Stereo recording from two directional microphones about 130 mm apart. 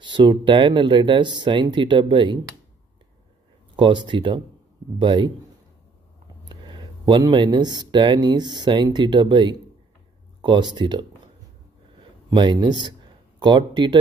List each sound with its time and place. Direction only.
0.0 s speech: 35° right (ahead or behind)
3.7 s speech: 35° right (ahead or behind)
6.5 s speech: 35° right (ahead or behind)
12.3 s speech: 35° right (ahead or behind)